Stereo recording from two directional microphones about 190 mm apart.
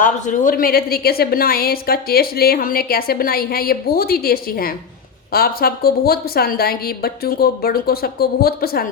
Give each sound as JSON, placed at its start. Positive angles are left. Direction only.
{"t": 0.0, "sound": "a woman's voice", "side_deg": 45}